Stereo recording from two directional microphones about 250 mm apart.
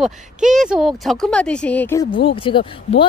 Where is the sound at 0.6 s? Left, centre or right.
Centre.